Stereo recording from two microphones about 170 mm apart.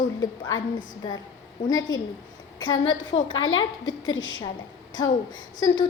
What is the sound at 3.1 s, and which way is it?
A woman's voice, 35° left (ahead or behind).